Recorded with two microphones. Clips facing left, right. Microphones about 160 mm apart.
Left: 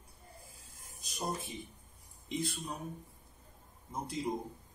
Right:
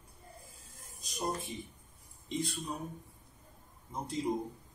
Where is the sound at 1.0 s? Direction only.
Centre (ahead or behind).